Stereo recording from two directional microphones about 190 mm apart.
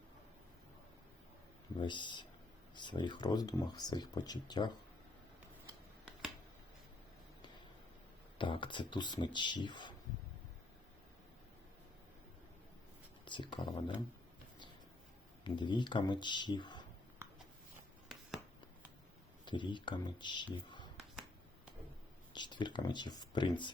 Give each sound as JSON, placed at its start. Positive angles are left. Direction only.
{"t": 1.8, "sound": "speech", "side_deg": 25}
{"t": 8.4, "sound": "speech", "side_deg": 25}
{"t": 13.2, "sound": "speech", "side_deg": 25}
{"t": 15.4, "sound": "speech", "side_deg": 25}
{"t": 19.5, "sound": "speech", "side_deg": 25}
{"t": 22.3, "sound": "speech", "side_deg": 25}